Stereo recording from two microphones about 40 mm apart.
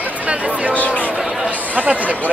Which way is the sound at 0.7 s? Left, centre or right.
Left.